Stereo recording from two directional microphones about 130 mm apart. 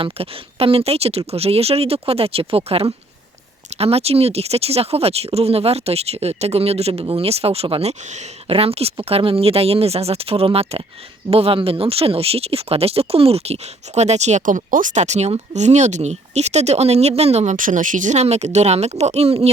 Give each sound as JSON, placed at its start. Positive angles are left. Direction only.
{"t": 0.0, "sound": "speech", "side_deg": -45}